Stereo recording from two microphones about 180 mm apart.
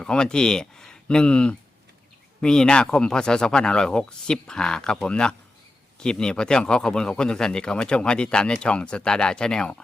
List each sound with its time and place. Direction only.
0.0 s speech: 5° left (ahead or behind)